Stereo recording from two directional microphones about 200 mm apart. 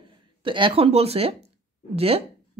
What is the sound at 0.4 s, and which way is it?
A woman's voice, 25° right (ahead or behind).